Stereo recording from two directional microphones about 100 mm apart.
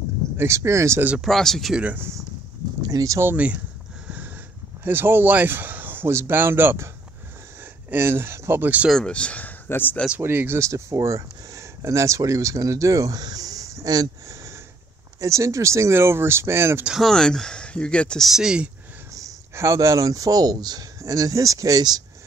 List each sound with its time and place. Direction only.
0.4 s speech: 30° right (ahead or behind)
1.2 s speech: 5° left (ahead or behind)
1.8 s speech: 15° right (ahead or behind)
2.8 s speech: 35° right (ahead or behind)
3.3 s speech: 15° right (ahead or behind)
4.8 s speech: 20° right (ahead or behind)
7.9 s speech: 25° right (ahead or behind)
8.9 s speech: 10° left (ahead or behind)
10.2 s speech: 25° right (ahead or behind)
16.8 s speech: 5° right (ahead or behind)
17.1 s speech: 5° left (ahead or behind)
18.3 s speech: 5° right (ahead or behind)
19.1 s speech: 30° right (ahead or behind)